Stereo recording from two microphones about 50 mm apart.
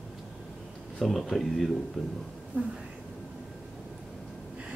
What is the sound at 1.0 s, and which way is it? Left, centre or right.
Speech, centre.